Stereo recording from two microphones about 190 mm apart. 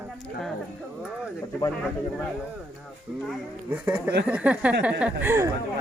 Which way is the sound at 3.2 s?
10° right (ahead or behind).